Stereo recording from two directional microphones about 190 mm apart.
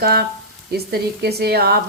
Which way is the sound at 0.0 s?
55° right (ahead or behind).